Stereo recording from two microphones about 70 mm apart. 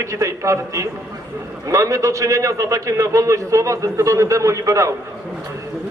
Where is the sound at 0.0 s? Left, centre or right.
Right.